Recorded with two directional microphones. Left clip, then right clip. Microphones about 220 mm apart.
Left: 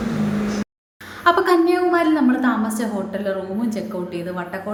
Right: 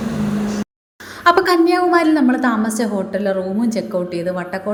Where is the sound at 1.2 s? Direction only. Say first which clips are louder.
Right 3 dB; 30° right (ahead or behind).